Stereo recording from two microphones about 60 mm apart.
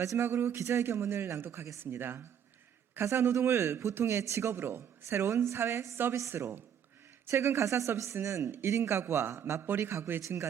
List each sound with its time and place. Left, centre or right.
0.0 s speech: right
0.3 s a woman's voice: right
3.0 s a woman's voice: right
8.4 s a man's voice: right
10.2 s speech: right